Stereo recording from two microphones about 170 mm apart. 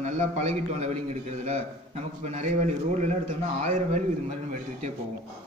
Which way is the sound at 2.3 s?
45° right (ahead or behind).